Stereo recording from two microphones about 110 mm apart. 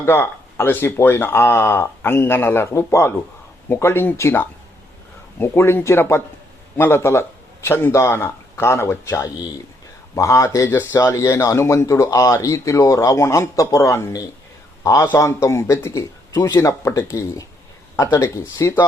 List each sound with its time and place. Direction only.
0.0 s speech: 20° left (ahead or behind)